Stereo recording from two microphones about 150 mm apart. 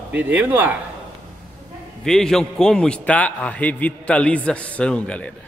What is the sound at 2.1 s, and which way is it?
A man's voice, 5° left (ahead or behind).